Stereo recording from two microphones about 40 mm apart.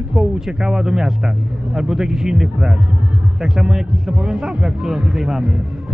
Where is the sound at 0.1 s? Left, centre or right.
Centre.